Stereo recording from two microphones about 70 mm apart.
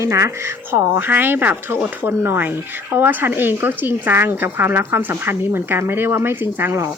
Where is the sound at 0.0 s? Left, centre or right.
Right.